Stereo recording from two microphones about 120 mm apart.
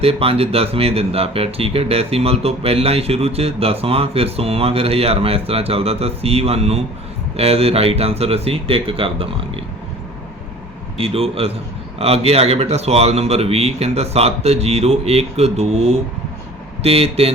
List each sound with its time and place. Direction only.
0.0 s speech: 55° right (ahead or behind)
10.9 s speech: 55° right (ahead or behind)